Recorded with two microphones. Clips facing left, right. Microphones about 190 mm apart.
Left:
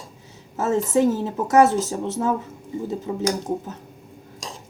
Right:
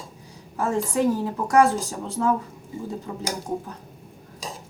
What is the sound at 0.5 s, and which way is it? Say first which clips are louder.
Speech: left 4 dB; 25° left (ahead or behind).